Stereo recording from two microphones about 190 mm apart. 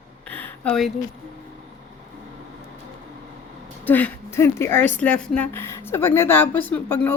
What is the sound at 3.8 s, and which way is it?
Speech, 10° left (ahead or behind).